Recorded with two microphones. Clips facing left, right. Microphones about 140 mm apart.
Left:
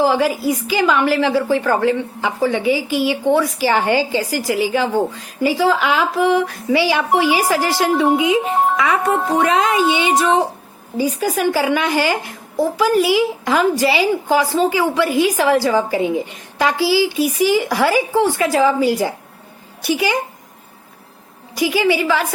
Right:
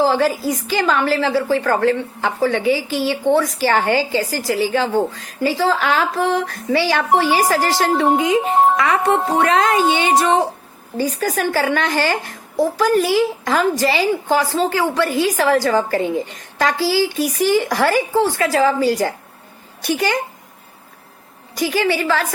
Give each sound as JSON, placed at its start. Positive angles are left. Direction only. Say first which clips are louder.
{"t": 0.0, "sound": "a woman's voice", "louder": "even", "side_deg": 15}
{"t": 9.7, "sound": "a woman's voice", "louder": "even", "side_deg": -40}
{"t": 10.9, "sound": "a woman's voice", "louder": "left 1 dB", "side_deg": 10}
{"t": 21.5, "sound": "a woman's voice", "louder": "left 2 dB", "side_deg": 10}